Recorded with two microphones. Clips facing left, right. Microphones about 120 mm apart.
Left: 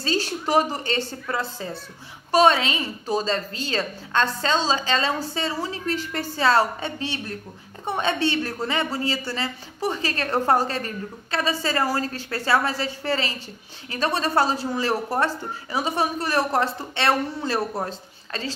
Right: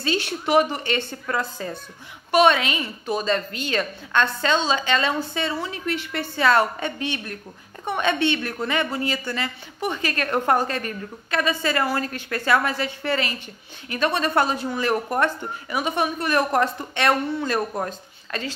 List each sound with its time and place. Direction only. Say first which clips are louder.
0.0 s a woman's voice: even; 35° left (ahead or behind)